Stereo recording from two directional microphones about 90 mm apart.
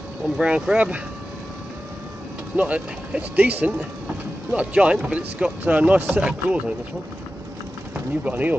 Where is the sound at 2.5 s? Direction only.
15° right (ahead or behind).